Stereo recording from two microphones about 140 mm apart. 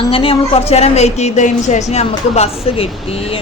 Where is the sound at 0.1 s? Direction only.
40° left (ahead or behind).